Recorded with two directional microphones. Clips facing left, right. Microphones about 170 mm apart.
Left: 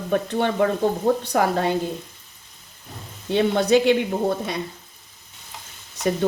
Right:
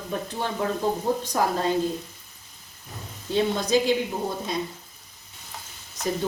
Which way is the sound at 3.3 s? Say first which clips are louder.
Left 5 dB; 65° left (ahead or behind).